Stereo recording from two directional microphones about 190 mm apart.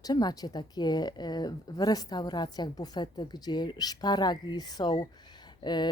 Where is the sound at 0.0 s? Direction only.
20° left (ahead or behind).